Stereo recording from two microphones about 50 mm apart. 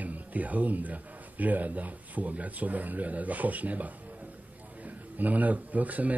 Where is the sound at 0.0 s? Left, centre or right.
Right.